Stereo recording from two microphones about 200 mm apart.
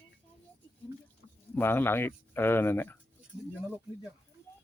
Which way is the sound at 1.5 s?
10° left (ahead or behind).